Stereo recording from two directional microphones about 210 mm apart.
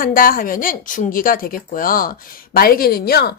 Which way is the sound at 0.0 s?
40° left (ahead or behind).